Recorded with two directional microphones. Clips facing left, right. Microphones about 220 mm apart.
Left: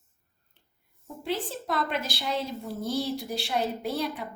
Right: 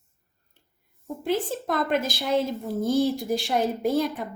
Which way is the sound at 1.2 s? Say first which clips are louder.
Right 5 dB; 45° right (ahead or behind).